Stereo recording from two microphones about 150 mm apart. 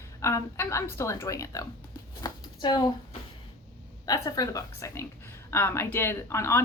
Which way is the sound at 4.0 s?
25° left (ahead or behind).